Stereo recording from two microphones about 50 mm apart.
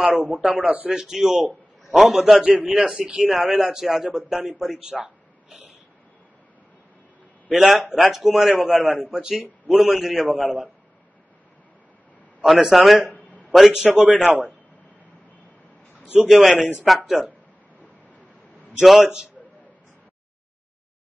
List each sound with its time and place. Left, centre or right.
0.0 s a man's voice: centre
2.4 s a man's voice: centre
3.6 s a man's voice: centre
7.5 s a man's voice: centre
12.4 s a man's voice: centre
16.3 s a man's voice: centre
18.8 s a man's voice: centre